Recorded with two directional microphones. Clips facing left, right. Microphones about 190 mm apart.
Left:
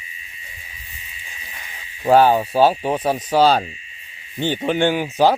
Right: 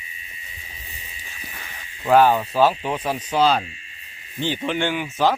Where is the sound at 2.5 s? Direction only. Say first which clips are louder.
Left 3 dB; 30° left (ahead or behind).